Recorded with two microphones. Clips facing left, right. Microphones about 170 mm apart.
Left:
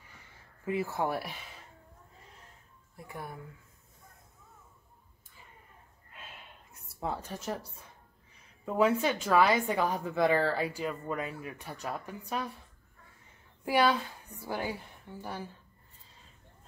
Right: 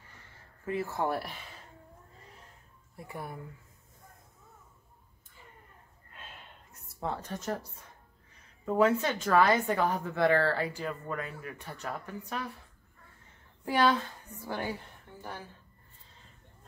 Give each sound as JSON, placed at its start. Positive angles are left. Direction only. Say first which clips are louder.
{"t": 0.7, "sound": "a woman's voice", "louder": "even", "side_deg": 15}
{"t": 3.1, "sound": "speech", "louder": "right 1 dB", "side_deg": 0}
{"t": 6.7, "sound": "a woman's voice", "louder": "even", "side_deg": 10}
{"t": 8.7, "sound": "a woman's voice", "louder": "right 1 dB", "side_deg": 10}
{"t": 13.7, "sound": "a woman's voice", "louder": "even", "side_deg": 10}